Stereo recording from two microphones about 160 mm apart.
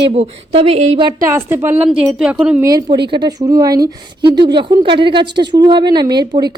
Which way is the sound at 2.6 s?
25° right (ahead or behind).